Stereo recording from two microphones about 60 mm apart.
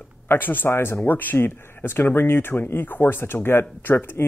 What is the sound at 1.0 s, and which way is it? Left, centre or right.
Speech, left.